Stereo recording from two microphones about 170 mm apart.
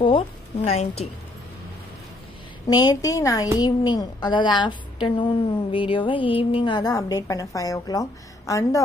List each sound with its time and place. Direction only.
0.7 s a woman's voice: 40° left (ahead or behind)
2.7 s a woman's voice: 25° left (ahead or behind)